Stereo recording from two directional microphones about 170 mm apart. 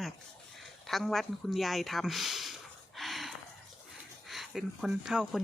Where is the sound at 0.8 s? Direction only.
Centre (ahead or behind).